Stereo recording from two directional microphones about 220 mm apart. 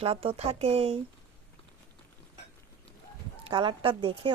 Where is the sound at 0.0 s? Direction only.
25° right (ahead or behind).